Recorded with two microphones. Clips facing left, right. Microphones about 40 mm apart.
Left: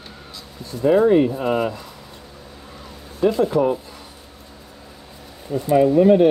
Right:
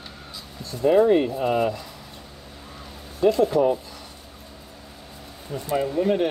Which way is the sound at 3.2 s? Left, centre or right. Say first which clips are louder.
Left 1 dB; centre.